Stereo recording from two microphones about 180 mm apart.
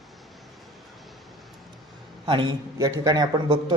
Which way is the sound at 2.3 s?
25° right (ahead or behind).